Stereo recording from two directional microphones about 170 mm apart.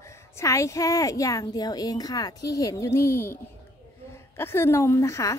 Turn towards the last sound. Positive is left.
turn(degrees=15)  # may be behind; listen again after turning